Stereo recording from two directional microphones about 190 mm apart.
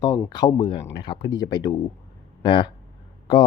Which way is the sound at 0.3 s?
25° left (ahead or behind).